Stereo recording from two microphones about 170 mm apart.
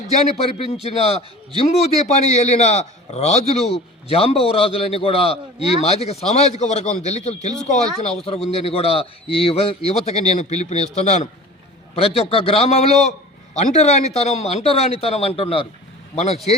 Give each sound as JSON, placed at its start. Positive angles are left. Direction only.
{"t": 0.6, "sound": "a man's voice", "side_deg": 35}